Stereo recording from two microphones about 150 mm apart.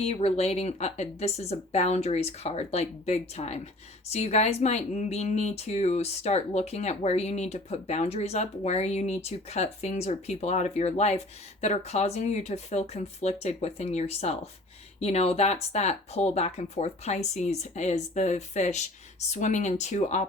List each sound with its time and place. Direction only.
0.0 s speech: 45° left (ahead or behind)